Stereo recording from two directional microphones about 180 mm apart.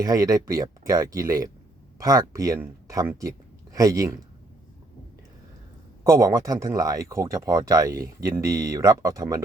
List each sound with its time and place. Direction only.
0.0 s speech: 20° right (ahead or behind)
6.1 s speech: 20° right (ahead or behind)